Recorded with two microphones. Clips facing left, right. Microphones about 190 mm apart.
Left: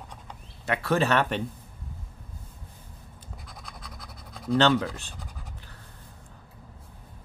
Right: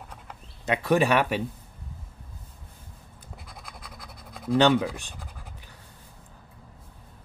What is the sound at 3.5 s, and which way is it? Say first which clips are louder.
Scratch: even; centre (ahead or behind).